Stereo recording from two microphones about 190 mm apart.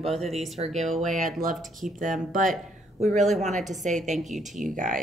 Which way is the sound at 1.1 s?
40° right (ahead or behind).